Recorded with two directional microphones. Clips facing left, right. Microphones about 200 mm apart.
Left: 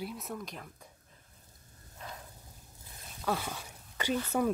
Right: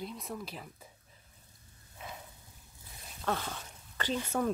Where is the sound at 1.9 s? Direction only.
5° right (ahead or behind).